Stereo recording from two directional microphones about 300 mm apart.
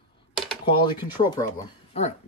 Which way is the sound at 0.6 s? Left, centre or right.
Centre.